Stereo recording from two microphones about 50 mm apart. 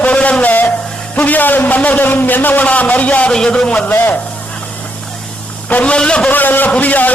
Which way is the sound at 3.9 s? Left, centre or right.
Left.